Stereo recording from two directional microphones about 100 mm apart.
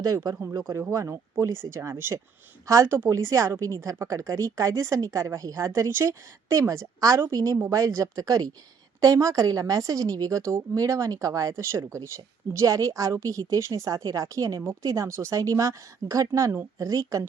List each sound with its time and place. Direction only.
0.0 s a woman's voice: 35° right (ahead or behind)